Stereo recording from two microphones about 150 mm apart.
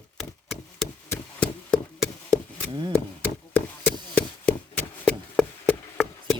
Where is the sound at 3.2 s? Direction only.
15° left (ahead or behind).